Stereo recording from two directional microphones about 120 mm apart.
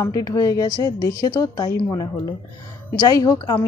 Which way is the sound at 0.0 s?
30° left (ahead or behind).